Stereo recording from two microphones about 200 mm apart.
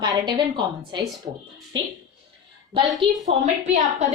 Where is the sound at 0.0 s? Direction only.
20° right (ahead or behind).